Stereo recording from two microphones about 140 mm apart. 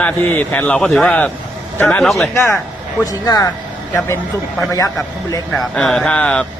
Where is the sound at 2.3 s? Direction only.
15° left (ahead or behind).